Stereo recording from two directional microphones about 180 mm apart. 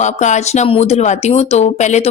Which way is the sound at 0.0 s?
40° left (ahead or behind).